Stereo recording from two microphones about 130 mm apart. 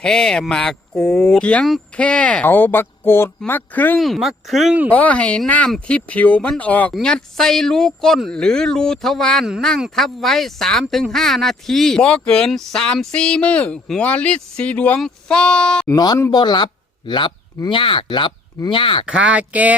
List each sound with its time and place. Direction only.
0.0 s speech: 5° left (ahead or behind)
4.0 s speech: centre (ahead or behind)
4.9 s speech: 10° left (ahead or behind)
15.9 s speech: 30° left (ahead or behind)
19.0 s speech: 10° right (ahead or behind)